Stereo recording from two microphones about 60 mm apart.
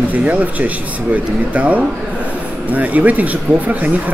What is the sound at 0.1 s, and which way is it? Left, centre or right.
Speech, right.